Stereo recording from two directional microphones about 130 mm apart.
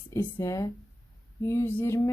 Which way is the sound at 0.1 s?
20° left (ahead or behind).